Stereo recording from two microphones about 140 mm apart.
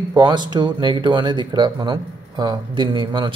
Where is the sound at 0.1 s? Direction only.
30° right (ahead or behind).